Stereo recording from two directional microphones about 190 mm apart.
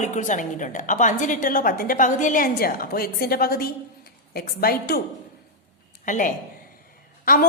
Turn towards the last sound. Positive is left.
turn(degrees=50)  # may be behind; listen again after turning